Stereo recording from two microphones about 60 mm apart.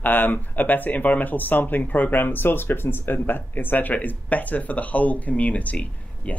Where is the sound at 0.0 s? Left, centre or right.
Left.